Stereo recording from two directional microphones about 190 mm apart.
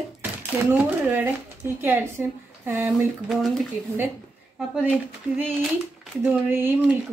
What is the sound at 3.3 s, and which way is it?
Speech, centre (ahead or behind).